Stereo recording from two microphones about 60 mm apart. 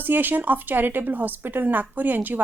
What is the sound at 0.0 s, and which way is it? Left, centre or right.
Speech, right.